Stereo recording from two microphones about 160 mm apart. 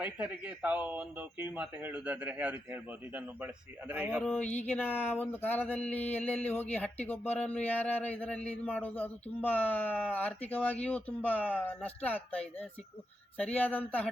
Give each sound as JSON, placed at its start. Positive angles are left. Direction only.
{"t": 0.0, "sound": "speech", "side_deg": -10}
{"t": 4.2, "sound": "speech", "side_deg": 10}